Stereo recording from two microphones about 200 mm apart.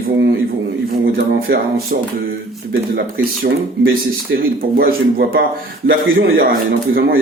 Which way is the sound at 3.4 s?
50° right (ahead or behind).